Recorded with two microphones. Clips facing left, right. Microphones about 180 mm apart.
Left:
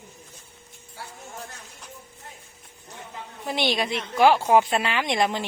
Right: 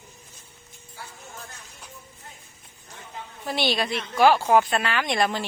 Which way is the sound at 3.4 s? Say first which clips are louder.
Even; 20° left (ahead or behind).